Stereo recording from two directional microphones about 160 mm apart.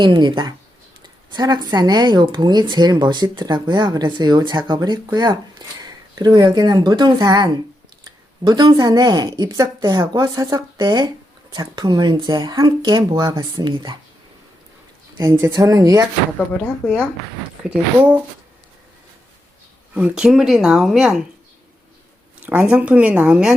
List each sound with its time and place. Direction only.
0.0 s speech: 30° right (ahead or behind)
15.2 s speech: 20° right (ahead or behind)
17.6 s speech: 5° right (ahead or behind)
19.9 s speech: 10° right (ahead or behind)
22.4 s speech: 5° right (ahead or behind)